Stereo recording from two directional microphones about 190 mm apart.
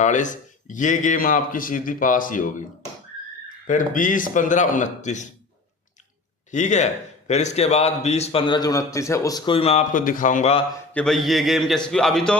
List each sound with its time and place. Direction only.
0.0 s speech: 40° left (ahead or behind)
3.7 s speech: 45° left (ahead or behind)
6.5 s a man's voice: 40° left (ahead or behind)
9.9 s speech: 45° left (ahead or behind)
10.9 s a man's voice: centre (ahead or behind)